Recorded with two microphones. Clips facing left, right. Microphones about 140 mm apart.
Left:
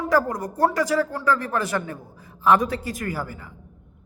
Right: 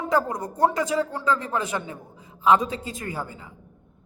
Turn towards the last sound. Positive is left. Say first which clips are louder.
# left 3 dB
turn(degrees=-25)  # may be behind; listen again after turning